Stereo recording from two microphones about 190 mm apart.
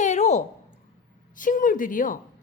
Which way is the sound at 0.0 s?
40° left (ahead or behind).